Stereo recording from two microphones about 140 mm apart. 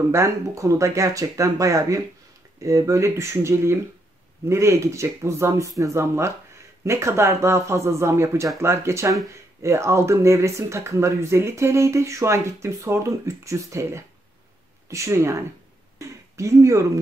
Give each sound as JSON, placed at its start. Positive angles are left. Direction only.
{"t": 0.1, "sound": "speech", "side_deg": -20}